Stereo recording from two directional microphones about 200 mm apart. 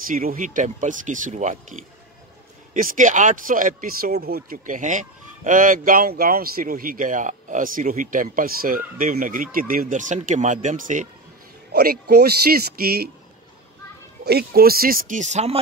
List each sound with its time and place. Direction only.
0.1 s speech: 45° right (ahead or behind)
11.7 s speech: 50° right (ahead or behind)
14.2 s speech: 50° right (ahead or behind); by 15.6 s 35° right (ahead or behind)